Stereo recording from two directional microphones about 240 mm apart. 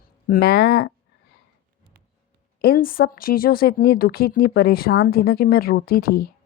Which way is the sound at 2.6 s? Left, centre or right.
Left.